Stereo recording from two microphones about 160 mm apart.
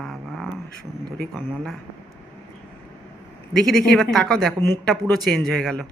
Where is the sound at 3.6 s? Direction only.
Centre (ahead or behind).